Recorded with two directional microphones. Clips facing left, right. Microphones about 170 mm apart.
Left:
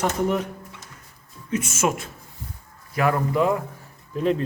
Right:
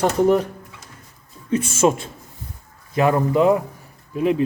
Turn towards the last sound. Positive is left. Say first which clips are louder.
# right 2 dB
turn(degrees=-10)  # may be behind; listen again after turning